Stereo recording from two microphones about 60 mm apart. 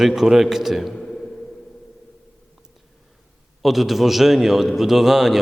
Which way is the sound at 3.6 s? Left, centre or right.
Centre.